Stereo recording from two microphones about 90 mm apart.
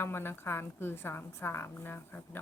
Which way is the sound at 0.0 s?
25° left (ahead or behind).